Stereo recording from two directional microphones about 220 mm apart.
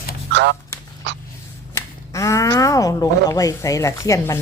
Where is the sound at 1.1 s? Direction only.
55° right (ahead or behind).